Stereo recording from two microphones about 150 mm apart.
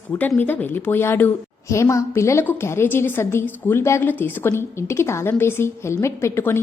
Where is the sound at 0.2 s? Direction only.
10° left (ahead or behind).